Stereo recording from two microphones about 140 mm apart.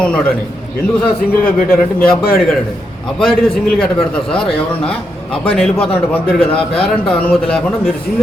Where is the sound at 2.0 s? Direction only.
90° left.